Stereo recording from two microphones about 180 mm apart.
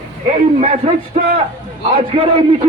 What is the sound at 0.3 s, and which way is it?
A man's voice, 35° right (ahead or behind).